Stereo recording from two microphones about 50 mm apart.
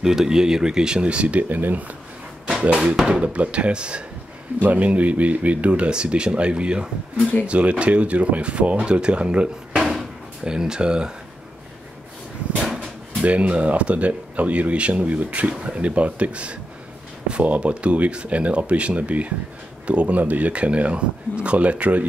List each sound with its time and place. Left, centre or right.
0.0 s speech: centre
1.5 s speech: right
2.7 s speech: right
13.2 s speech: right